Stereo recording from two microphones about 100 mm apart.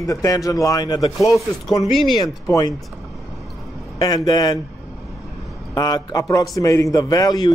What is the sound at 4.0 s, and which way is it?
Speech, 40° left (ahead or behind).